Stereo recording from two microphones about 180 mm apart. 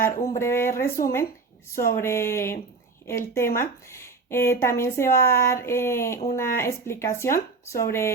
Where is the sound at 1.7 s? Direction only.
50° left (ahead or behind).